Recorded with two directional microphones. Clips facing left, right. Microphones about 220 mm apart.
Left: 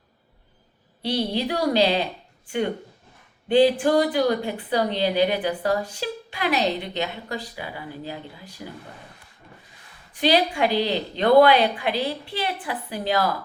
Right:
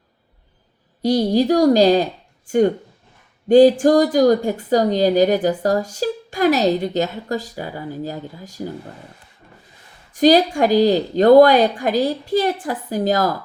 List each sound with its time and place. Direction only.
1.0 s speech: 45° right (ahead or behind)
10.1 s speech: 40° right (ahead or behind)